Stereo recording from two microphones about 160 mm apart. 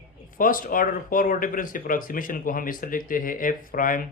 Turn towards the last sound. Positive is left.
turn(degrees=60)  # may be behind; listen again after turning